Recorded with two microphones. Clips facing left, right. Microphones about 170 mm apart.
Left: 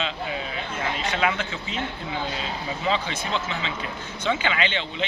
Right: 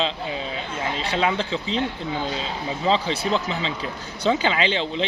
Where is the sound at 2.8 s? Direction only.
30° right (ahead or behind).